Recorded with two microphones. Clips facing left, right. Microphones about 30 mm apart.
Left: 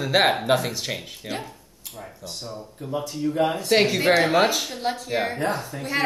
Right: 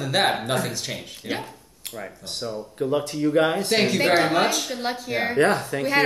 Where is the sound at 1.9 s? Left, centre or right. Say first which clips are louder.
Right 4 dB; right.